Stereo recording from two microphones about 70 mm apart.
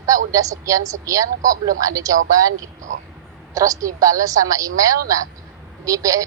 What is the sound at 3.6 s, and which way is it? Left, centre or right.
A woman's voice, right.